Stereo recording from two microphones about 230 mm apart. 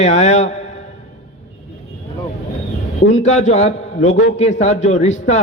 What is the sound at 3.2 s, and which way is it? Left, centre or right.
A man's voice, left.